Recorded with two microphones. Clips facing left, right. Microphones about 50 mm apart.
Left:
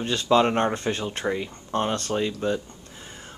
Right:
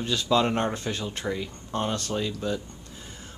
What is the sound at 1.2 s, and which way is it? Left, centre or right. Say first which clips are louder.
Speech: left 3 dB; left.